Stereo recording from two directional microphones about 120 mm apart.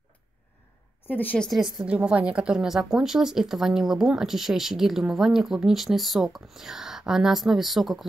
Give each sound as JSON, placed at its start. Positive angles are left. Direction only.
{"t": 1.0, "sound": "a woman's voice", "side_deg": 15}
{"t": 1.9, "sound": "speech", "side_deg": -10}